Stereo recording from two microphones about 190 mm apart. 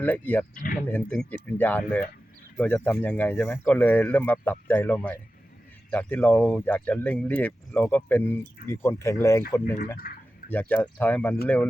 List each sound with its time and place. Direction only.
0.0 s speech: 10° left (ahead or behind)
10.0 s a sound: 50° left (ahead or behind)
10.5 s speech: 10° left (ahead or behind)